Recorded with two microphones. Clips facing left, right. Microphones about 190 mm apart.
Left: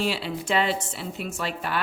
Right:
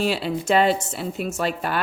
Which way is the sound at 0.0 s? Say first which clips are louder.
Right 4 dB; 45° right (ahead or behind).